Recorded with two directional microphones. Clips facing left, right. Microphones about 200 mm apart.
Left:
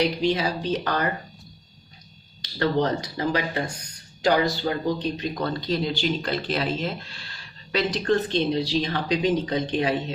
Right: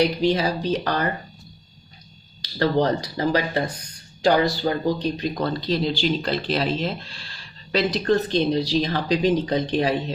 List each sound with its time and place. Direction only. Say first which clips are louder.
0.0 s speech: right 3 dB; 40° right (ahead or behind)
2.4 s speech: right 2 dB; 35° right (ahead or behind)